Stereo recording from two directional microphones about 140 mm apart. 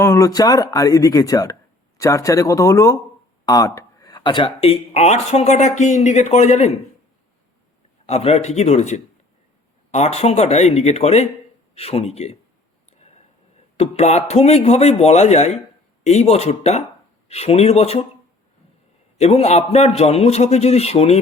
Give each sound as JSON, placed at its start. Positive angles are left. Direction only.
{"t": 0.0, "sound": "speech", "side_deg": 20}
{"t": 8.0, "sound": "speech", "side_deg": 50}
{"t": 13.7, "sound": "speech", "side_deg": 50}
{"t": 19.1, "sound": "speech", "side_deg": 50}